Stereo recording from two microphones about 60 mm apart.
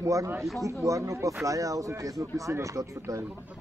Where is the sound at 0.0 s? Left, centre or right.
Right.